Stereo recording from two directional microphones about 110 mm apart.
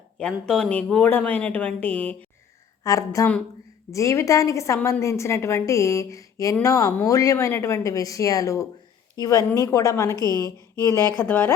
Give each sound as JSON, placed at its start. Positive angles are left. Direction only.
{"t": 0.2, "sound": "speech", "side_deg": 5}
{"t": 2.8, "sound": "a woman's voice", "side_deg": 30}